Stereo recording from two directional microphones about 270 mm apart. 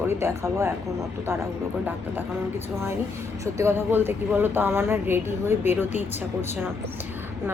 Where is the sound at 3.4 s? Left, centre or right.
Centre.